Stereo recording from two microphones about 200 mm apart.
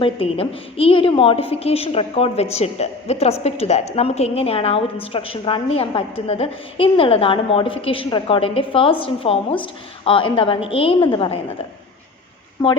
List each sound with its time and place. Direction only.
0.0 s a woman's voice: 30° left (ahead or behind)
12.6 s a woman's voice: 20° left (ahead or behind)